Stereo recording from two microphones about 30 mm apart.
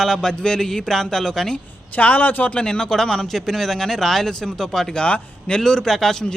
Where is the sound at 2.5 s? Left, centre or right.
Left.